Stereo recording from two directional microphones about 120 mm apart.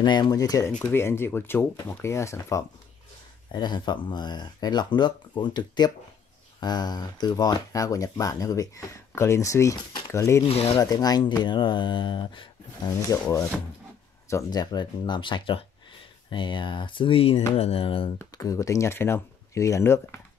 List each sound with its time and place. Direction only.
0.0 s speech: 40° left (ahead or behind)
0.7 s speech: 15° left (ahead or behind)
3.5 s speech: 35° left (ahead or behind)
10.4 s speech: 55° left (ahead or behind)
10.8 s speech: 30° left (ahead or behind)
14.3 s speech: 35° left (ahead or behind)
18.4 s speech: 25° left (ahead or behind)